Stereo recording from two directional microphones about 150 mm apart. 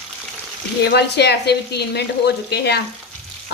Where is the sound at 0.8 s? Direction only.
90° left.